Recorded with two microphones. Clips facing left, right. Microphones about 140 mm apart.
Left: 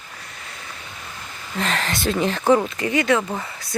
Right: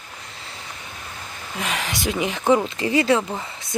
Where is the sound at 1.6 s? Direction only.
10° right (ahead or behind).